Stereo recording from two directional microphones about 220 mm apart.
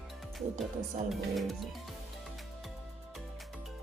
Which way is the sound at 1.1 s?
Centre (ahead or behind).